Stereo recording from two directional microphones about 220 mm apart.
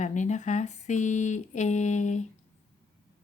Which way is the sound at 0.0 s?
35° left (ahead or behind).